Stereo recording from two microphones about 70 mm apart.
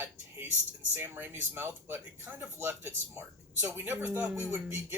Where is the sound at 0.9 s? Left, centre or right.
Right.